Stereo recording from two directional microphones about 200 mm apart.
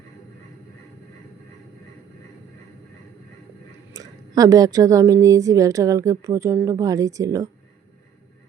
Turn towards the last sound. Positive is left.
turn(degrees=-15)  # may be behind; listen again after turning